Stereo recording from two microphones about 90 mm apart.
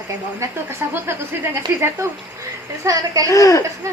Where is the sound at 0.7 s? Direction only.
25° right (ahead or behind).